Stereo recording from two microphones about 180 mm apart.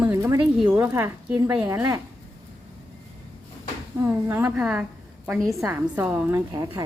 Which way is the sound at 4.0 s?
15° right (ahead or behind).